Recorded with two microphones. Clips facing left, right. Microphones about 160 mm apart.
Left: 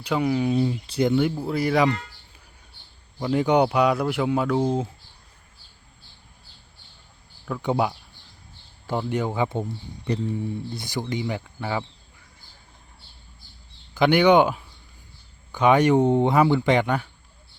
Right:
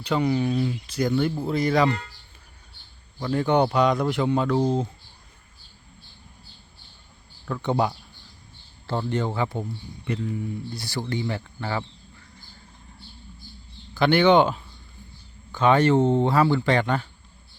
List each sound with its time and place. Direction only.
0.0 s speech: 5° left (ahead or behind)
0.5 s speech: 30° left (ahead or behind)
1.1 s speech: 10° left (ahead or behind)
3.2 s speech: 15° left (ahead or behind)
7.4 s speech: 5° left (ahead or behind)
13.9 s speech: 15° left (ahead or behind)